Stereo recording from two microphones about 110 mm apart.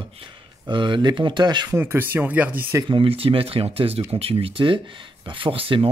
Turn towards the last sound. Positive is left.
turn(degrees=-55)  # may be behind; listen again after turning